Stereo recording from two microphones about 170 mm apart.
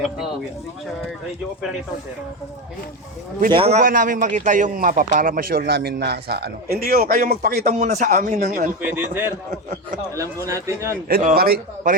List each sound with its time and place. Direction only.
3.5 s a man's voice: 35° right (ahead or behind); by 7.7 s 65° right (ahead or behind)
7.7 s speech: 45° right (ahead or behind)
8.8 s speech: 10° right (ahead or behind)
11.1 s a man's voice: 55° right (ahead or behind)